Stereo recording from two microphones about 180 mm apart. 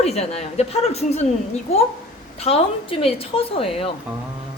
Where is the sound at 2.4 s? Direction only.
35° left (ahead or behind).